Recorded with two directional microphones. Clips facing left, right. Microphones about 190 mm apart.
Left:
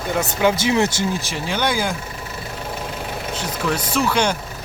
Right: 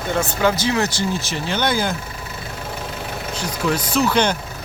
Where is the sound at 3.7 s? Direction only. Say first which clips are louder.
Right 1 dB; 10° left (ahead or behind).